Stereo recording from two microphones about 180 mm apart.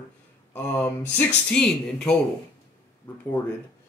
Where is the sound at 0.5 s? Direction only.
15° left (ahead or behind).